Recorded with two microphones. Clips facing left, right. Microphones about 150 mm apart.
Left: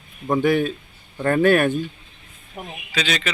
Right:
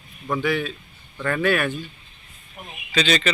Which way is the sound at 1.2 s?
40° left (ahead or behind).